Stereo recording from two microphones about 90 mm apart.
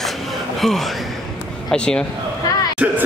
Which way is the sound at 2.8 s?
15° right (ahead or behind).